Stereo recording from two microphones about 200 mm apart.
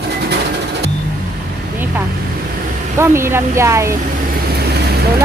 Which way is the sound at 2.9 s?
15° right (ahead or behind).